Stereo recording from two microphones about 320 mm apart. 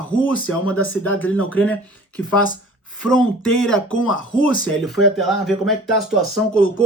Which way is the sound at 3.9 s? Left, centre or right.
Left.